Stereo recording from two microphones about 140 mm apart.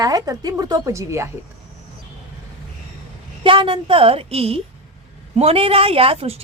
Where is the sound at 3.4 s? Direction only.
40° right (ahead or behind).